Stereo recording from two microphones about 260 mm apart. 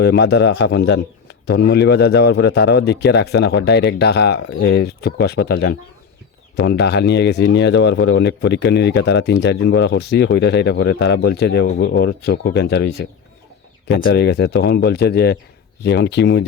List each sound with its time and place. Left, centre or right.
0.0 s speech: left